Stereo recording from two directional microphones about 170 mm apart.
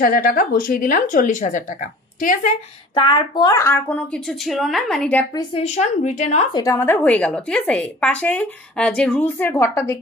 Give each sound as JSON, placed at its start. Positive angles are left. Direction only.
{"t": 0.0, "sound": "speech", "side_deg": 55}
{"t": 2.9, "sound": "a woman's voice", "side_deg": 30}
{"t": 5.3, "sound": "speech", "side_deg": 25}
{"t": 5.6, "sound": "speech", "side_deg": 45}
{"t": 6.5, "sound": "a woman's voice", "side_deg": 20}